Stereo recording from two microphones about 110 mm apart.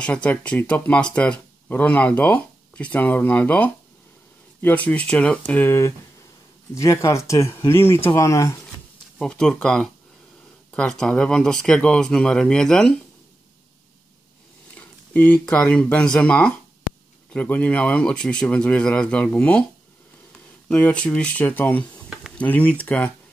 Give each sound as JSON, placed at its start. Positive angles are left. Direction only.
{"t": 0.0, "sound": "speech", "side_deg": 10}
{"t": 6.7, "sound": "speech", "side_deg": 30}
{"t": 9.2, "sound": "speech", "side_deg": 5}
{"t": 14.8, "sound": "speech", "side_deg": 15}
{"t": 20.6, "sound": "speech", "side_deg": 10}